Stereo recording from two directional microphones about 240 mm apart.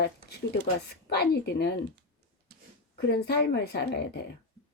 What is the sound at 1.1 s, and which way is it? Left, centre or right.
Speech, left.